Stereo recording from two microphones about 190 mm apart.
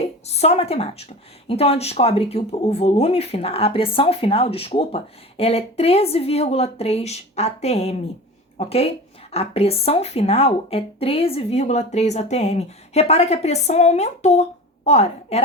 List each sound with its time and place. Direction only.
0.3 s speech: 35° left (ahead or behind)